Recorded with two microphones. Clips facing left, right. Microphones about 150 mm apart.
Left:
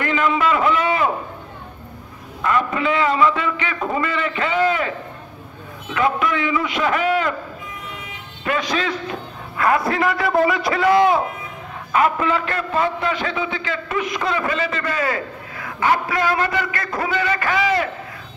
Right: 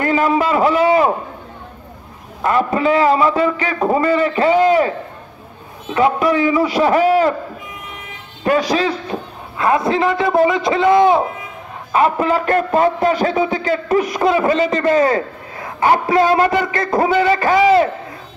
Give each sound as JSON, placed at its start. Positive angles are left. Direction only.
{"t": 0.0, "sound": "a sound", "side_deg": -40}
{"t": 2.4, "sound": "a man's voice", "side_deg": -35}
{"t": 5.9, "sound": "a man's voice", "side_deg": -30}
{"t": 8.5, "sound": "a man's voice", "side_deg": -35}
{"t": 9.6, "sound": "a man's voice", "side_deg": -20}
{"t": 11.9, "sound": "a man's voice", "side_deg": -35}